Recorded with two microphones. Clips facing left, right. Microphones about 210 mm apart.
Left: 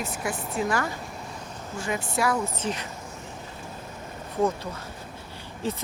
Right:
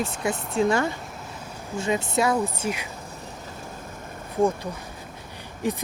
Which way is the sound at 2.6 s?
10° right (ahead or behind).